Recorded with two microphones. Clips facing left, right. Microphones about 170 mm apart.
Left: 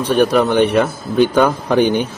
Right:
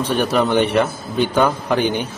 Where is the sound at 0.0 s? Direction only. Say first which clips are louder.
Left 4 dB; 10° left (ahead or behind).